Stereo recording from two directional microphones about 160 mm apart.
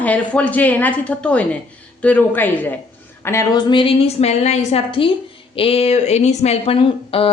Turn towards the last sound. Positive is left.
turn(degrees=35)  # may be behind; listen again after turning